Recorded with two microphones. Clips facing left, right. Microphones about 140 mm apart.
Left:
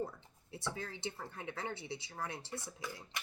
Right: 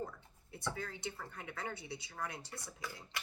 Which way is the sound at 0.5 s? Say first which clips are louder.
Even; 25° left (ahead or behind).